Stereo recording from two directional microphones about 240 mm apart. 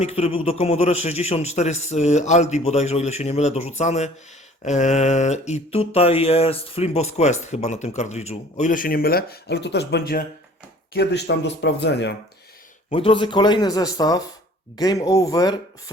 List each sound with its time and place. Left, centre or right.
0.0 s mantra: left
10.9 s speech: left
12.9 s a man's voice: left